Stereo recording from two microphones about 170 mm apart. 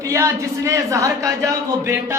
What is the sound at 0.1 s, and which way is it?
Speech, 15° right (ahead or behind).